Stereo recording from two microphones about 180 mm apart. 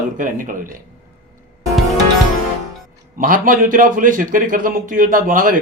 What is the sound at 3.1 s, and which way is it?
A man's voice, 50° right (ahead or behind).